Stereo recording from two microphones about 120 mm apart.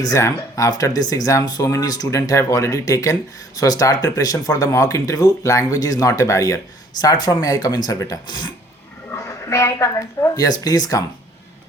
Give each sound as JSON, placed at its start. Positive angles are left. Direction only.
{"t": 0.0, "sound": "speech", "side_deg": 25}
{"t": 9.1, "sound": "a woman's voice", "side_deg": 25}